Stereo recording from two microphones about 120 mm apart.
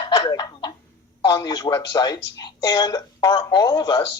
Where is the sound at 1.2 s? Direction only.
30° left (ahead or behind).